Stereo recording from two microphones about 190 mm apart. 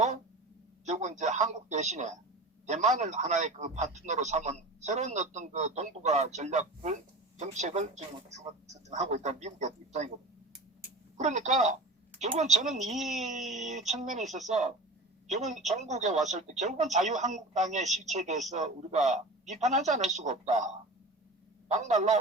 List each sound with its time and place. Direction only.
0.9 s a man's voice: 40° right (ahead or behind)
11.2 s a man's voice: 40° right (ahead or behind)
12.9 s speech: centre (ahead or behind)
13.1 s a man's voice: 40° right (ahead or behind)